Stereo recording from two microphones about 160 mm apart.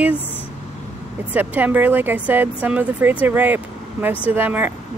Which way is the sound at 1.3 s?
10° right (ahead or behind).